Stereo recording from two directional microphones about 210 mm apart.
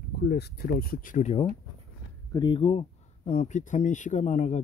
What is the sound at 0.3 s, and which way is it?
Speech, 50° left (ahead or behind).